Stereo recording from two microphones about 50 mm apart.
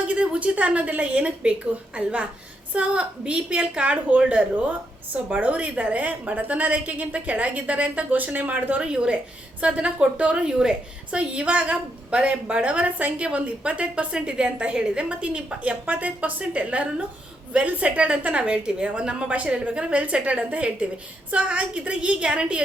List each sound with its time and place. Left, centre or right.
0.0 s a woman's voice: right
8.8 s a woman's voice: centre